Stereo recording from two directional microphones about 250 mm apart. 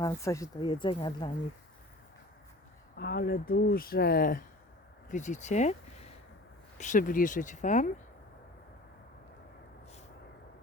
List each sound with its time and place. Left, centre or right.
0.0 s speech: centre
3.0 s speech: left
6.7 s speech: left